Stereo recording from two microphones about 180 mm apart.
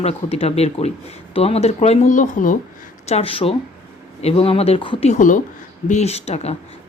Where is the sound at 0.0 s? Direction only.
35° left (ahead or behind).